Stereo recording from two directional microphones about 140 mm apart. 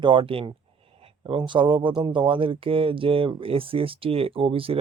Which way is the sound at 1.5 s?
35° right (ahead or behind).